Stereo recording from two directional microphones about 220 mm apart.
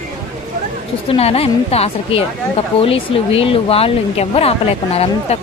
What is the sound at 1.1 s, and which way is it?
A woman's voice, 25° left (ahead or behind).